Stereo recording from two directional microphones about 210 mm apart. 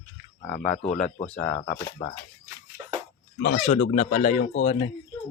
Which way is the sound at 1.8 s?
20° left (ahead or behind).